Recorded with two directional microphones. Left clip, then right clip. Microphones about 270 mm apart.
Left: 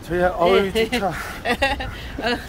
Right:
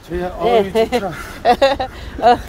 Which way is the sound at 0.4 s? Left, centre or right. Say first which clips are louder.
Right 6 dB; centre.